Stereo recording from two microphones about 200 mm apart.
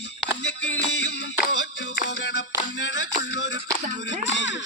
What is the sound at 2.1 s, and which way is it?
Music, 60° left (ahead or behind).